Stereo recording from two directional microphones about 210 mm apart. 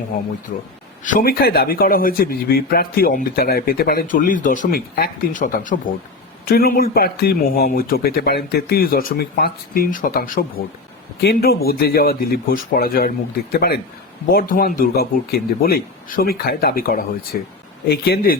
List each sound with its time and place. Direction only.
1.0 s a man's voice: 40° left (ahead or behind)